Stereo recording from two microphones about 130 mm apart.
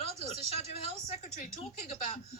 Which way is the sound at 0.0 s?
50° left (ahead or behind).